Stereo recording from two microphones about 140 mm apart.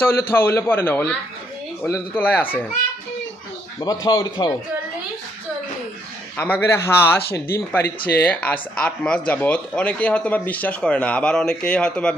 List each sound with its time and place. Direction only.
0.0 s speech: 15° left (ahead or behind)
2.1 s speech: 10° left (ahead or behind)
3.8 s speech: 30° left (ahead or behind)
6.3 s speech: 10° left (ahead or behind)